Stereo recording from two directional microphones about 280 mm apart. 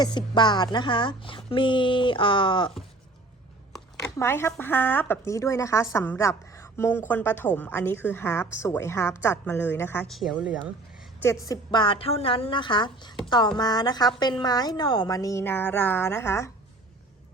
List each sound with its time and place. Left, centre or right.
0.0 s speech: centre
4.2 s speech: centre
11.2 s speech: centre